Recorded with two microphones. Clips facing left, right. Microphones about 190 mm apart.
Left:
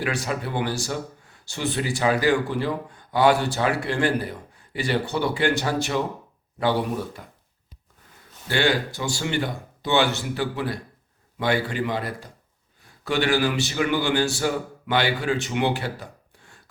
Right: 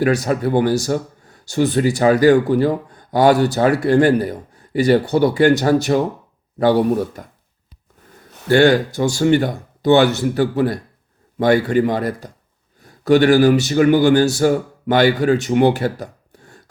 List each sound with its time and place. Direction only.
0.0 s speech: 40° right (ahead or behind)
8.4 s speech: 45° right (ahead or behind)